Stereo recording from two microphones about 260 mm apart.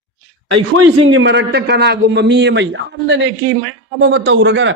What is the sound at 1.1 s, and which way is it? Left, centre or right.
A man's voice, right.